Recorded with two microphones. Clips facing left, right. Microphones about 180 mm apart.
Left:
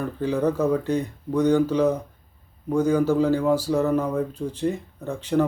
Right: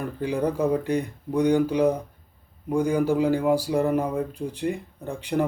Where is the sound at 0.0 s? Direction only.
15° right (ahead or behind).